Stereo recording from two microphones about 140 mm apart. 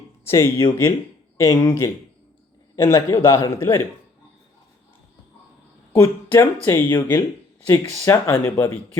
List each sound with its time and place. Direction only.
0.6 s speech: 30° left (ahead or behind)
5.9 s speech: 15° left (ahead or behind)